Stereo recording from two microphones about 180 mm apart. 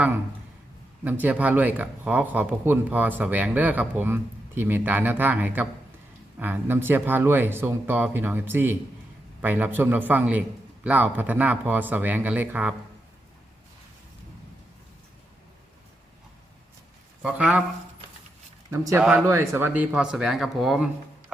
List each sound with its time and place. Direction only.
1.0 s speech: 10° right (ahead or behind)
17.2 s speech: 5° right (ahead or behind)
18.7 s speech: 15° right (ahead or behind)